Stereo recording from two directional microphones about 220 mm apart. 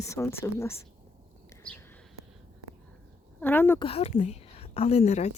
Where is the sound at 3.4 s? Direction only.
10° left (ahead or behind).